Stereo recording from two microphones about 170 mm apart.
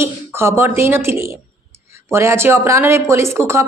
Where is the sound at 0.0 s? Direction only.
15° right (ahead or behind).